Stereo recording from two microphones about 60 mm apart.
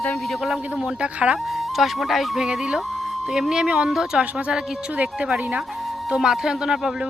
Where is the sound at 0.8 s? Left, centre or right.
Centre.